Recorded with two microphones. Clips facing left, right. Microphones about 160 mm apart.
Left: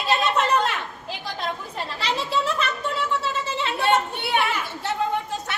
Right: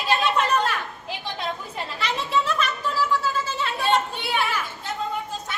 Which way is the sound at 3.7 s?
65° left (ahead or behind).